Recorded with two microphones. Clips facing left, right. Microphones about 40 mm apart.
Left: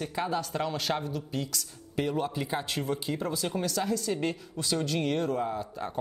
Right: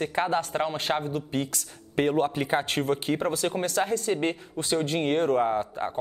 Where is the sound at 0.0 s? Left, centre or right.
Right.